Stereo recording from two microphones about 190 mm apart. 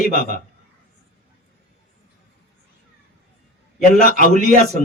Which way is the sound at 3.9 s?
45° left (ahead or behind).